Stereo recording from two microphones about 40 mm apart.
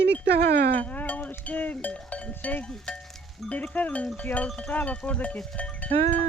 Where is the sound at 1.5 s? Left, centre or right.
Left.